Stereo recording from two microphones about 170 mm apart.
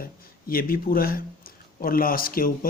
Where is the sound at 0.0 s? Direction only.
60° left (ahead or behind).